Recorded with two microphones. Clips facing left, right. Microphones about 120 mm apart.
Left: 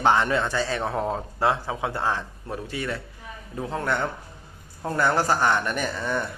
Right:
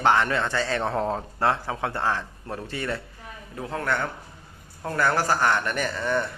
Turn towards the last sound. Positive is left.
turn(degrees=10)  # may be behind; listen again after turning